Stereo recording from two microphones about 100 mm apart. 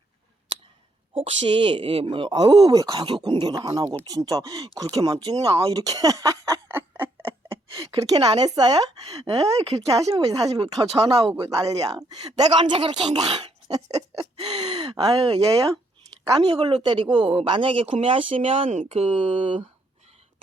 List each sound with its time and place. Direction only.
1.1 s speech: 60° right (ahead or behind)
2.3 s speech: 40° right (ahead or behind)
6.7 s a sound: 20° right (ahead or behind)
7.5 s a sound: 35° right (ahead or behind)
8.3 s speech: 40° right (ahead or behind)
12.5 s speech: 55° right (ahead or behind)
13.3 s a sound: 65° right (ahead or behind)
14.3 s gasp: 90° right
14.6 s speech: 50° right (ahead or behind)
16.4 s speech: 50° right (ahead or behind); by 19.6 s 80° right